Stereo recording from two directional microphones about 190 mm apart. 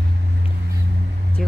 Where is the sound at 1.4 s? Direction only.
5° left (ahead or behind).